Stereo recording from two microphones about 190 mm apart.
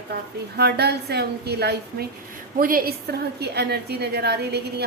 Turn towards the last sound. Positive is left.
turn(degrees=-60)  # may be behind; listen again after turning